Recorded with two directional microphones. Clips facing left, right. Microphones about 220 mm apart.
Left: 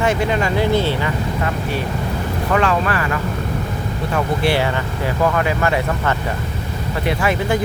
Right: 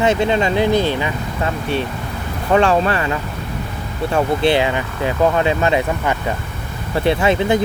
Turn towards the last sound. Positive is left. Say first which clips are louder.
# right 3 dB
turn(degrees=-25)  # may be behind; listen again after turning